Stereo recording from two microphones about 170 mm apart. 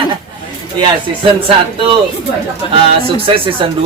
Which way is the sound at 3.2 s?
30° right (ahead or behind).